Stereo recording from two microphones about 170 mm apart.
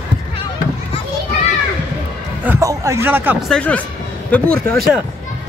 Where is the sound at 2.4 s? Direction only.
15° right (ahead or behind).